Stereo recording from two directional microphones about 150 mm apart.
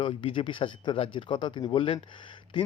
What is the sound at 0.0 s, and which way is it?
Speech, 35° left (ahead or behind).